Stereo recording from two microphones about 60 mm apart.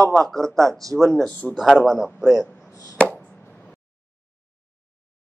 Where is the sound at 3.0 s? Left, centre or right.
Left.